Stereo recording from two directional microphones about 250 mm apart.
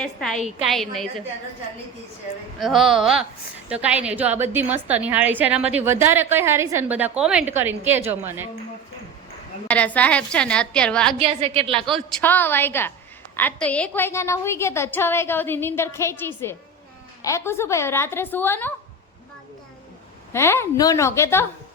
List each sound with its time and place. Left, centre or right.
0.0 s a woman's voice: centre
2.6 s a woman's voice: centre
9.6 s a woman's voice: centre
11.2 s a woman's voice: right
11.7 s a woman's voice: centre
20.3 s a woman's voice: centre